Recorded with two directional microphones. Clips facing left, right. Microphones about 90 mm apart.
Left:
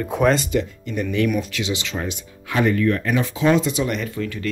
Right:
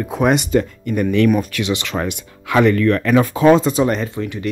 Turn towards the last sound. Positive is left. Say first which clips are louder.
# right 2 dB
turn(degrees=-25)  # may be behind; listen again after turning